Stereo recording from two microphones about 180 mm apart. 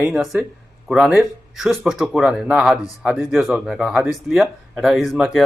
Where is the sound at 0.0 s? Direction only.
5° right (ahead or behind).